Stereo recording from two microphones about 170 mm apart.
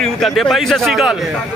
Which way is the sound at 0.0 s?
Centre (ahead or behind).